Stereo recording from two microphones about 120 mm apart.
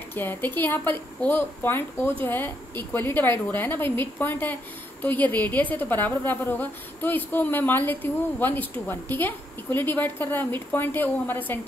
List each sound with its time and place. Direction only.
0.1 s a woman's voice: 15° left (ahead or behind)